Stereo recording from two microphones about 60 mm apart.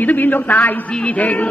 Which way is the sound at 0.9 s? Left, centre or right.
Centre.